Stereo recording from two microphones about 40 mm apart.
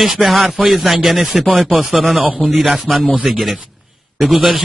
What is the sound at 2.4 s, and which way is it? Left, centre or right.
Speech, centre.